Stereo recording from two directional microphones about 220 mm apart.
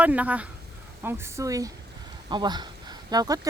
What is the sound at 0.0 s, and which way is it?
Speech, 5° right (ahead or behind).